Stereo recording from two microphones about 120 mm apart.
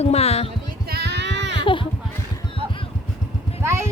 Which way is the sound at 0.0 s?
60° left (ahead or behind).